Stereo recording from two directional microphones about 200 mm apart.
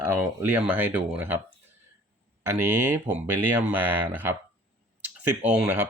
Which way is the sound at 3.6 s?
10° right (ahead or behind).